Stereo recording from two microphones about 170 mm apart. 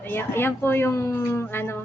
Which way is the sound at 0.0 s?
10° left (ahead or behind).